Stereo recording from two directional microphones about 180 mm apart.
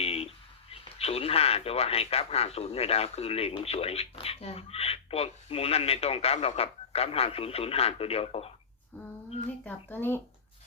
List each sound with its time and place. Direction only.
0.0 s speech: 35° left (ahead or behind)
9.6 s speech: 10° left (ahead or behind)